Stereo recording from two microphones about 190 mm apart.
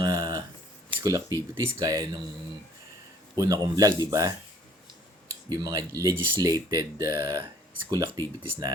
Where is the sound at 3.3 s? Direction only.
20° right (ahead or behind).